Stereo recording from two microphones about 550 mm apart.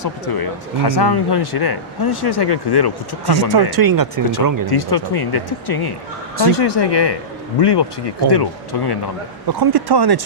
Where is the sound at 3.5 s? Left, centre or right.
Right.